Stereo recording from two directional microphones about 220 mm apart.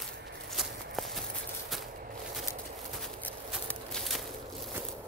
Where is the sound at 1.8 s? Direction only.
40° right (ahead or behind).